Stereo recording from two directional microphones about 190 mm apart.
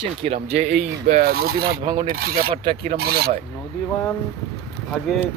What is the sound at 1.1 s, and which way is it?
Rub, 55° right (ahead or behind).